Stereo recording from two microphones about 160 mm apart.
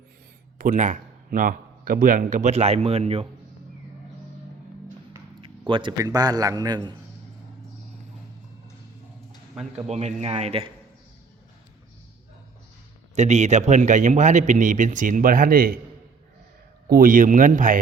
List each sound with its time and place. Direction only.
0.6 s speech: 50° right (ahead or behind)
5.4 s a man's voice: 30° right (ahead or behind)
9.8 s a man's voice: 45° right (ahead or behind)
13.1 s a man's voice: 45° right (ahead or behind); by 15.8 s 65° right (ahead or behind)
16.9 s speech: 60° right (ahead or behind)